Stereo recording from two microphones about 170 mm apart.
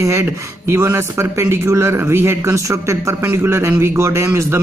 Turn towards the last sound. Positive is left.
turn(degrees=-15)  # may be behind; listen again after turning